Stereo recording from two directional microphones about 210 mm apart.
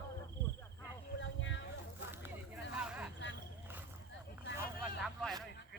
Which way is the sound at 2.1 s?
5° right (ahead or behind).